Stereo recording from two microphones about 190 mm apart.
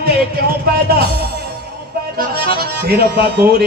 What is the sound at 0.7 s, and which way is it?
Music, 55° right (ahead or behind).